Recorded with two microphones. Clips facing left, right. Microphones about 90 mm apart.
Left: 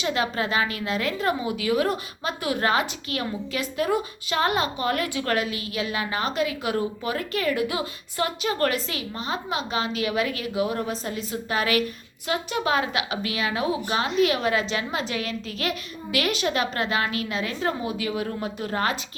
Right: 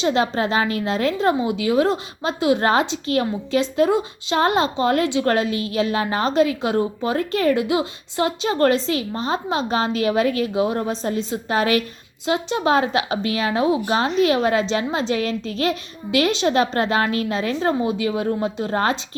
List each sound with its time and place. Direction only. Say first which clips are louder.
0.0 s a woman's voice: right 6 dB; 30° right (ahead or behind)